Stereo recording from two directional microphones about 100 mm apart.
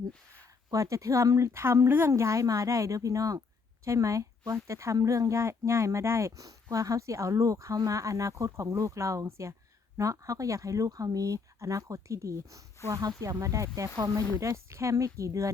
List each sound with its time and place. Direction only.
0.7 s speech: 35° right (ahead or behind)